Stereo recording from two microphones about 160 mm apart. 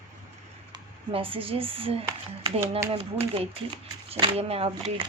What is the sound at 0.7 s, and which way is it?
Speech, 35° right (ahead or behind).